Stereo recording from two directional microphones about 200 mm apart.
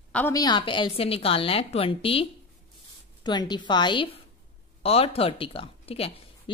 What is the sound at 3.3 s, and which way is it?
Speech, 20° left (ahead or behind).